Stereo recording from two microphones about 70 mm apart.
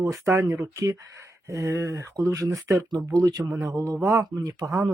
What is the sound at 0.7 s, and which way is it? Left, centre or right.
Speech, right.